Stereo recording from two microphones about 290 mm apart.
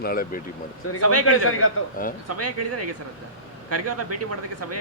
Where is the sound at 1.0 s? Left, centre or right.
Right.